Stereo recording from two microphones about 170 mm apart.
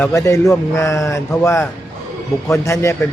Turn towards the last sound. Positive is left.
turn(degrees=15)  # may be behind; listen again after turning